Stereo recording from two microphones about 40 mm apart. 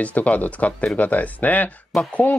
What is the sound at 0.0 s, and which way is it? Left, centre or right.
Speech, left.